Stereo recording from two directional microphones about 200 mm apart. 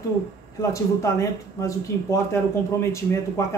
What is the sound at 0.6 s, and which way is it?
Speech, 15° left (ahead or behind).